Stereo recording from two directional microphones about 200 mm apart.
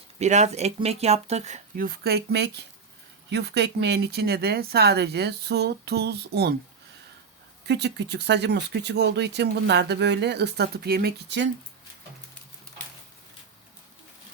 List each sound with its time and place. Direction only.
0.2 s speech: 35° right (ahead or behind); by 6.5 s 55° right (ahead or behind)
7.7 s speech: 60° right (ahead or behind)